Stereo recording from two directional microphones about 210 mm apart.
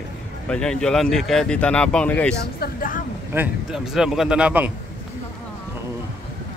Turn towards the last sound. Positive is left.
turn(degrees=-5)  # may be behind; listen again after turning